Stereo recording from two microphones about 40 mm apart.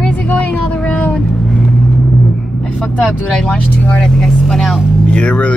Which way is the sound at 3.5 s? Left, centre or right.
Left.